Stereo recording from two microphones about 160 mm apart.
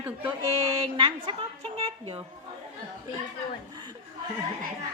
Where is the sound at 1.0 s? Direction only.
30° right (ahead or behind).